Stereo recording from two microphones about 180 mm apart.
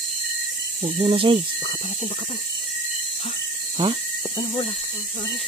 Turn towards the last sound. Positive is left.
turn(degrees=-30)  # may be behind; listen again after turning